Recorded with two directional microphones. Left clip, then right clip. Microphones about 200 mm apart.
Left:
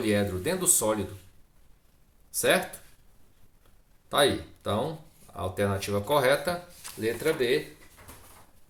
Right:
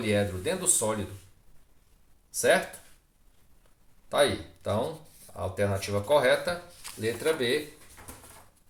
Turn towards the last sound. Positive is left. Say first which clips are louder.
# left 1 dB
turn(degrees=30)  # may be behind; listen again after turning